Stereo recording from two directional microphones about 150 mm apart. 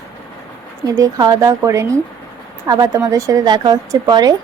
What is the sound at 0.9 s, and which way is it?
A woman's voice, 25° right (ahead or behind).